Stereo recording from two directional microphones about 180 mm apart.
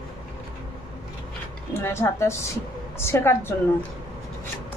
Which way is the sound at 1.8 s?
15° left (ahead or behind).